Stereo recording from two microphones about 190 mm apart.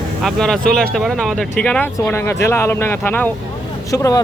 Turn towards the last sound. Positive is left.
turn(degrees=20)  # may be behind; listen again after turning